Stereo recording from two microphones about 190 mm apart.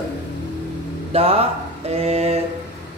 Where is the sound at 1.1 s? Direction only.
30° right (ahead or behind).